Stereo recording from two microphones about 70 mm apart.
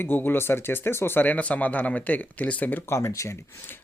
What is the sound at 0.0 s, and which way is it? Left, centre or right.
Speech, left.